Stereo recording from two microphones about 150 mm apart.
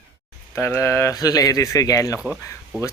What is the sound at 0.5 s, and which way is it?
Speech, 15° left (ahead or behind).